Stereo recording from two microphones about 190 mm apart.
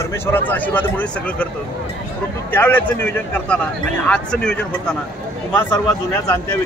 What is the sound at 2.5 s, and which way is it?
Speech, 10° left (ahead or behind).